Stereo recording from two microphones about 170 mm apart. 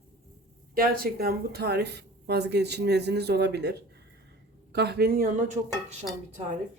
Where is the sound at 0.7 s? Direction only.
55° right (ahead or behind).